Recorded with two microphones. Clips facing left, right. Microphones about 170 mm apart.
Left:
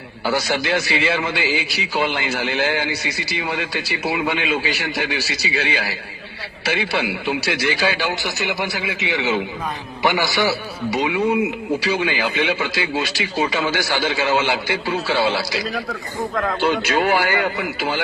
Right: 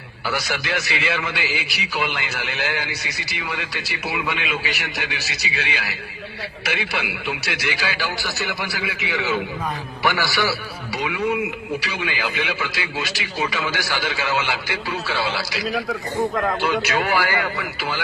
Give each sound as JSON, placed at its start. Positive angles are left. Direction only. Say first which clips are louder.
{"t": 0.3, "sound": "a man's voice", "louder": "left 5 dB", "side_deg": 25}